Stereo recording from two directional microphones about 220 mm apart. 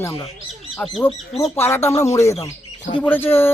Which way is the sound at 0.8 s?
5° left (ahead or behind).